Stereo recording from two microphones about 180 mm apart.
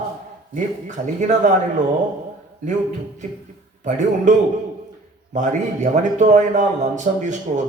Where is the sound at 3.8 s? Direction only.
45° right (ahead or behind).